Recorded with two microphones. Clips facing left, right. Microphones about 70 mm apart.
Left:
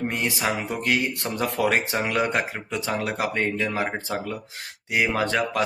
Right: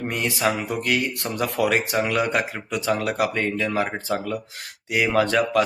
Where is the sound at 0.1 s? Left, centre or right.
Left.